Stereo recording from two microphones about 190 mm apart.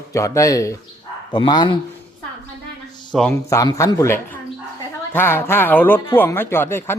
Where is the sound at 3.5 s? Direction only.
15° left (ahead or behind).